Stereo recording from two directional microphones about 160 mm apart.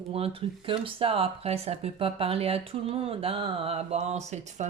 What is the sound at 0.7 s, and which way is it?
Speech, 35° right (ahead or behind).